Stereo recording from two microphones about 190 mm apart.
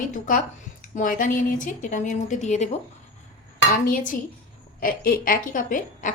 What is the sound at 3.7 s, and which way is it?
A woman's voice, 45° left (ahead or behind).